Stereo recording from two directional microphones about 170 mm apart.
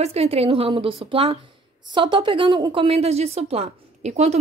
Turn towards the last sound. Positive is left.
turn(degrees=-40)  # may be behind; listen again after turning